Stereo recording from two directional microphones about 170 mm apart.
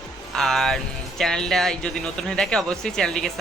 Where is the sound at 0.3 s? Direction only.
Centre (ahead or behind).